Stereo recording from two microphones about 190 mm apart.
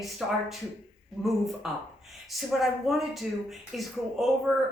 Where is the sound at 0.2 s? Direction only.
Centre (ahead or behind).